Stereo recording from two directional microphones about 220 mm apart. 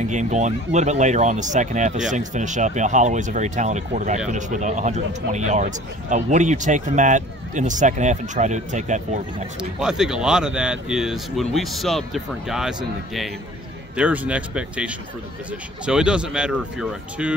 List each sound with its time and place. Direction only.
0.1 s speech: 35° right (ahead or behind)
9.6 s speech: 5° right (ahead or behind)